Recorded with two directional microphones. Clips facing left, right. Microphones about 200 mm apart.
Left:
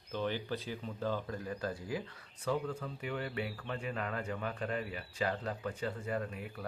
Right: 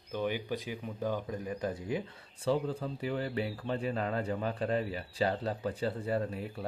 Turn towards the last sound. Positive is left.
turn(degrees=-30)  # may be behind; listen again after turning